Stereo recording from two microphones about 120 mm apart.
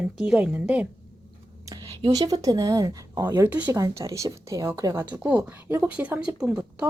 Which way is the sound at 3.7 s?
25° right (ahead or behind).